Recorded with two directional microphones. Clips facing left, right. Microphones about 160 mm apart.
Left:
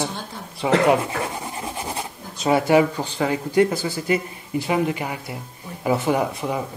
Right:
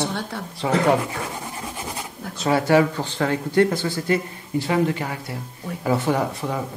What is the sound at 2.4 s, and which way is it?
Speech, 15° left (ahead or behind).